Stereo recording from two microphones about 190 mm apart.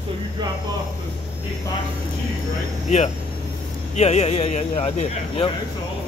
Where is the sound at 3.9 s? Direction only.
35° left (ahead or behind).